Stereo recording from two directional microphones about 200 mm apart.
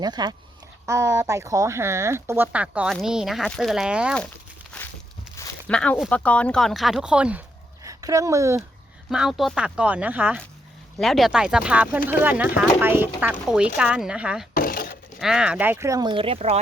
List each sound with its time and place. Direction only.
0.0 s speech: 20° right (ahead or behind); by 4.2 s 5° right (ahead or behind)
4.7 s a sound: 5° left (ahead or behind)
5.6 s speech: 5° left (ahead or behind)
7.9 s speech: 15° right (ahead or behind)
9.0 s speech: centre (ahead or behind)
14.5 s a sound: 45° left (ahead or behind)
15.2 s speech: 5° right (ahead or behind); by 16.6 s 30° right (ahead or behind)